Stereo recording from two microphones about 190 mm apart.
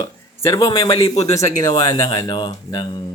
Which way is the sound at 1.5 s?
20° left (ahead or behind).